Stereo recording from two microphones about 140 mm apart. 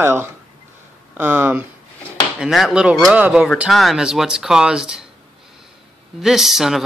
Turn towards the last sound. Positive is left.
turn(degrees=0)  # may be behind; listen again after turning